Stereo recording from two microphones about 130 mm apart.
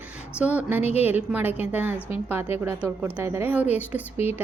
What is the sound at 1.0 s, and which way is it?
A woman's voice, 15° right (ahead or behind).